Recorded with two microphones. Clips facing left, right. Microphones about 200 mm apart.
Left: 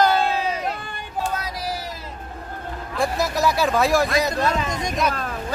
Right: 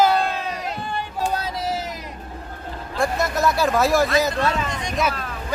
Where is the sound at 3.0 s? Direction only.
Centre (ahead or behind).